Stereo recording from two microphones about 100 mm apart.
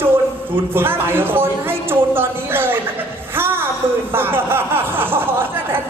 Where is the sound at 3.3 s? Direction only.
20° right (ahead or behind).